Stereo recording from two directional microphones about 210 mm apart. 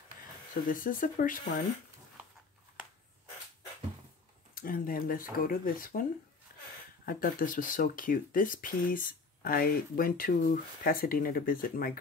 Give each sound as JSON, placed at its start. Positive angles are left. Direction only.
{"t": 0.7, "sound": "speech", "side_deg": 40}
{"t": 4.6, "sound": "speech", "side_deg": 45}
{"t": 6.5, "sound": "a sound", "side_deg": 45}
{"t": 7.1, "sound": "speech", "side_deg": 40}